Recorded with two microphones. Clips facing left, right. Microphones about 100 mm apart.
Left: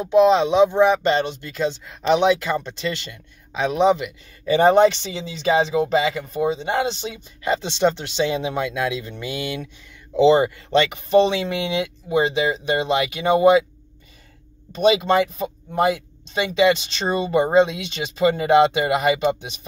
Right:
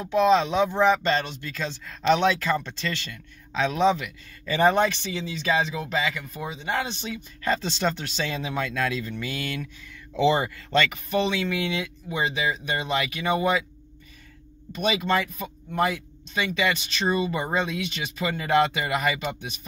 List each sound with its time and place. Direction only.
0.0 s speech: 20° left (ahead or behind)
14.7 s speech: 25° left (ahead or behind)